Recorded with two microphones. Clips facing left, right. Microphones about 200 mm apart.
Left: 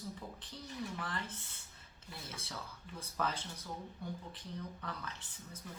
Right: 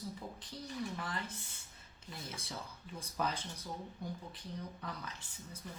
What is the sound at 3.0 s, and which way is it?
Speech, 15° right (ahead or behind).